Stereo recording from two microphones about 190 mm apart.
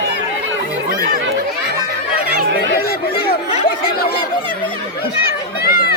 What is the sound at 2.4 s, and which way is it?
Fowl, 70° right (ahead or behind).